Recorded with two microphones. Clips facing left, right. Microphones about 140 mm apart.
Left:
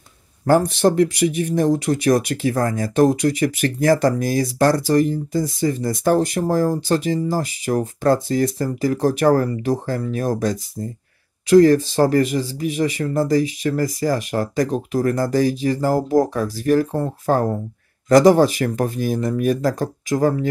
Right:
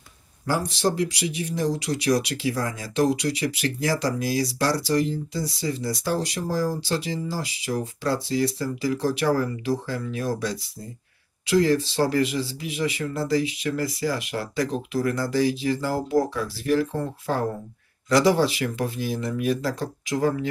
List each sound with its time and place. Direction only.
0.5 s speech: 55° left (ahead or behind)